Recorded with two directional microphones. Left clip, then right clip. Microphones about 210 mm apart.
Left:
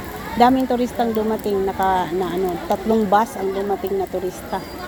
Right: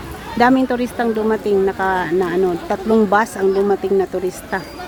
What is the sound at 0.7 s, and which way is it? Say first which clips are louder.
Speech: right 1 dB; 15° right (ahead or behind).